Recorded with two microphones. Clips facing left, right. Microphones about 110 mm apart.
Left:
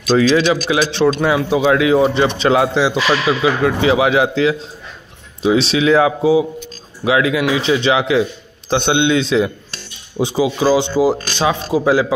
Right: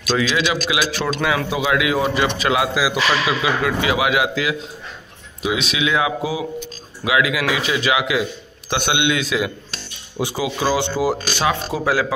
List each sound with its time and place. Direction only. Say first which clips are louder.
0.1 s a man's voice: left 7 dB; 35° left (ahead or behind); by 12.1 s 20° left (ahead or behind)